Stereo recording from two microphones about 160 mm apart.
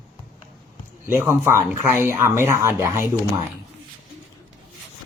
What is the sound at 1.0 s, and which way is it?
Speech, 15° right (ahead or behind).